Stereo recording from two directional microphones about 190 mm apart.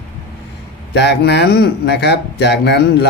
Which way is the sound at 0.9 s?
65° left (ahead or behind).